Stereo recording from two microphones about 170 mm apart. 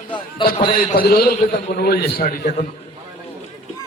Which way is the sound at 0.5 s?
30° left (ahead or behind).